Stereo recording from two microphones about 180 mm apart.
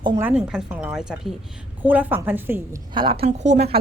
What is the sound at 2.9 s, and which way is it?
Speech, 30° right (ahead or behind).